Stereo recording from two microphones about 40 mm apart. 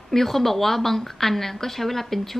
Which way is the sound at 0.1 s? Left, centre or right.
Centre.